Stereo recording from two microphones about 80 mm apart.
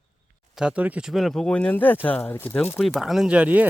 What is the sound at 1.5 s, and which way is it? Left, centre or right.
Speech, centre.